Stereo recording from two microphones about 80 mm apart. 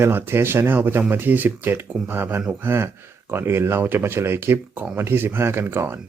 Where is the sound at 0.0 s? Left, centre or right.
Right.